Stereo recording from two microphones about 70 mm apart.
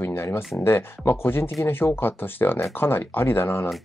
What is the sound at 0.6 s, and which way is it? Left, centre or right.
Speech, left.